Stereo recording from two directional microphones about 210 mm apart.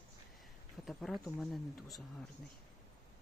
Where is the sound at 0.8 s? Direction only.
Centre (ahead or behind).